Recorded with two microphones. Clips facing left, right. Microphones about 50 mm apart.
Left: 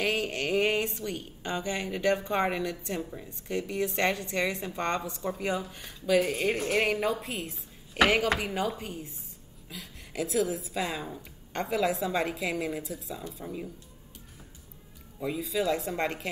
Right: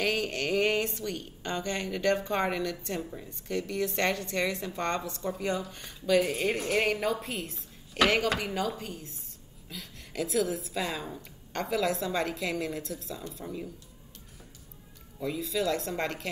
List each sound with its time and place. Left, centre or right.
0.0 s a woman's voice: centre
3.3 s a woman's voice: centre
8.3 s a woman's voice: centre
9.7 s a woman's voice: centre
15.1 s a woman's voice: centre